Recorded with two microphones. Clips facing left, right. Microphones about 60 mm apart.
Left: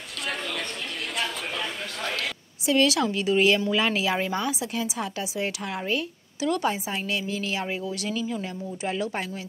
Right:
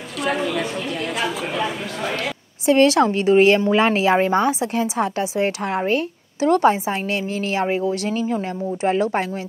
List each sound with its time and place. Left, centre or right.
0.2 s speech: centre
2.6 s speech: right